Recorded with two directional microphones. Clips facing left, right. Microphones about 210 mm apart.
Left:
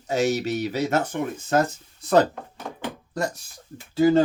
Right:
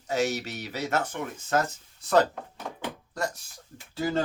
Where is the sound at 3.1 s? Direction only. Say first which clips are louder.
Left 5 dB; 15° left (ahead or behind).